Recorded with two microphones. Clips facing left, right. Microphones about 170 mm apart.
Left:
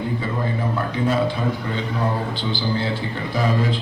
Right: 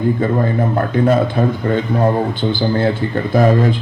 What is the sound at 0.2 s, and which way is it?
A man's voice, 50° right (ahead or behind).